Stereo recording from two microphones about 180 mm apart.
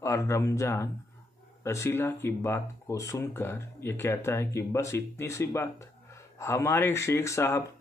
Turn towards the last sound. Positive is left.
turn(degrees=15)  # may be behind; listen again after turning